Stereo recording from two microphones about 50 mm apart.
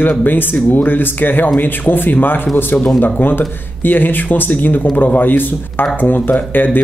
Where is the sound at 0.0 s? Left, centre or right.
Left.